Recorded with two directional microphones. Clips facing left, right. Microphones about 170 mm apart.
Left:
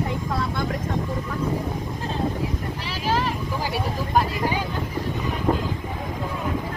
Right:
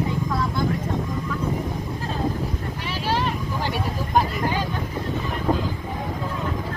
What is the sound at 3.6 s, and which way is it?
Speech, 5° left (ahead or behind).